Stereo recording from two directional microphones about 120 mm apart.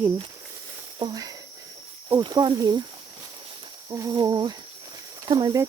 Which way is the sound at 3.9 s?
30° right (ahead or behind).